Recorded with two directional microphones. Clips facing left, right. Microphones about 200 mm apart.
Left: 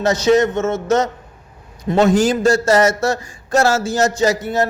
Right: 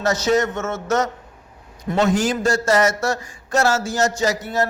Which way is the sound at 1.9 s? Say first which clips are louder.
Left 5 dB; 30° left (ahead or behind).